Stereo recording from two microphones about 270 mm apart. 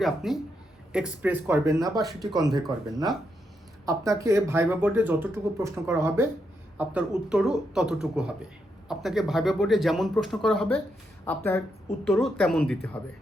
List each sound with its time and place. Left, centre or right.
0.0 s speech: centre
2.4 s speech: centre